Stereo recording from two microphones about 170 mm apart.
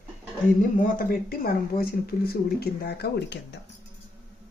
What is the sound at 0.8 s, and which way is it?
Speech, 55° left (ahead or behind).